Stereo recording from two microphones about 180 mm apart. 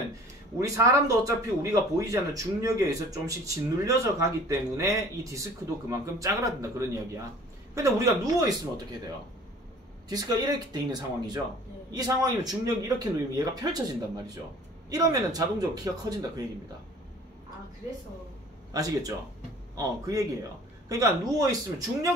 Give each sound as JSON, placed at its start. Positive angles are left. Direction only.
{"t": 0.6, "sound": "speech", "side_deg": -20}
{"t": 7.7, "sound": "speech", "side_deg": -20}
{"t": 10.0, "sound": "speech", "side_deg": -20}
{"t": 18.7, "sound": "speech", "side_deg": -20}
{"t": 20.9, "sound": "speech", "side_deg": -20}